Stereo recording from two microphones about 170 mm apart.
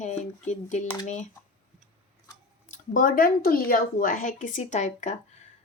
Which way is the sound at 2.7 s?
50° left (ahead or behind).